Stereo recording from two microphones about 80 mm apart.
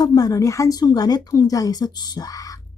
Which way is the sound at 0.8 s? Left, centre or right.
Left.